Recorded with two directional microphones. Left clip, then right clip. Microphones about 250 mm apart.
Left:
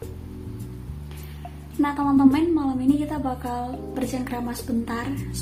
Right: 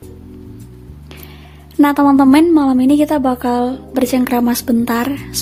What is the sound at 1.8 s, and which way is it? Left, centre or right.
A woman's voice, right.